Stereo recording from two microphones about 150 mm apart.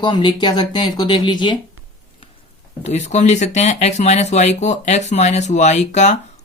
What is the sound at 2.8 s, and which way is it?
Speech, 50° left (ahead or behind).